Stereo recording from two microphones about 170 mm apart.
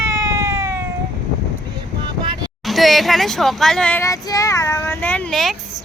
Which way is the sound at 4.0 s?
20° left (ahead or behind).